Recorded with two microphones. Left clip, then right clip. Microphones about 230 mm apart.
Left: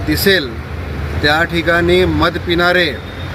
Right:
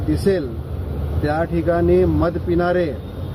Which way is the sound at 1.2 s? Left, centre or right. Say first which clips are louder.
Left 7 dB; centre.